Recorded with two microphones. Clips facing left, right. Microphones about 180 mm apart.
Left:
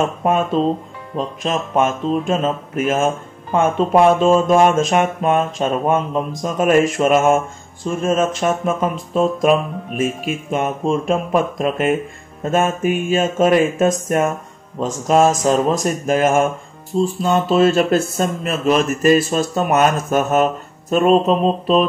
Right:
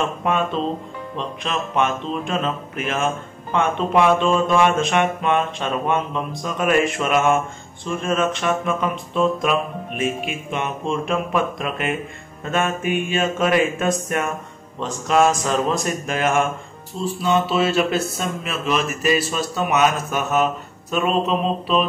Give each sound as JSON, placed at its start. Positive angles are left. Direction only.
{"t": 0.0, "sound": "speech", "side_deg": 45}